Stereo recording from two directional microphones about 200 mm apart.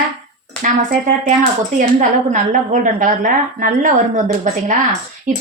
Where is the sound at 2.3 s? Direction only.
40° right (ahead or behind).